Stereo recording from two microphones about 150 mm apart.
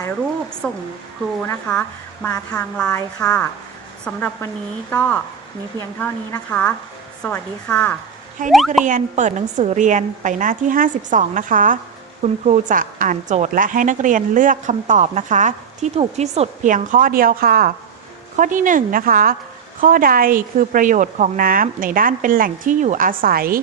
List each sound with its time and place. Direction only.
0.6 s speech: 5° left (ahead or behind)
8.8 s a woman's voice: 55° right (ahead or behind); by 17.7 s 75° right (ahead or behind)
18.3 s speech: 60° right (ahead or behind)